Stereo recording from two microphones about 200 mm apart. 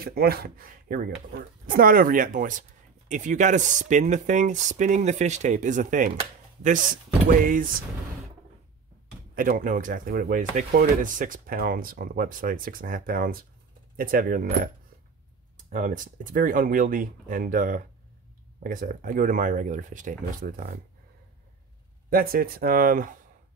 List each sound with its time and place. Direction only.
0.0 s speech: 50° right (ahead or behind)
9.3 s speech: 40° right (ahead or behind)
22.1 s speech: 45° right (ahead or behind)